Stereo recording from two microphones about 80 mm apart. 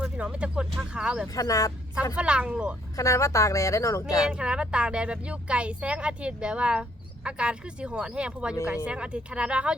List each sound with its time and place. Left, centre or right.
0.0 s speech: centre
1.3 s speech: left
2.1 s speech: centre
2.9 s a woman's voice: left
4.3 s speech: centre